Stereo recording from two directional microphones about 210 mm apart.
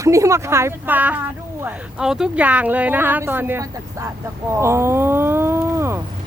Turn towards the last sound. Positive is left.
turn(degrees=-10)  # may be behind; listen again after turning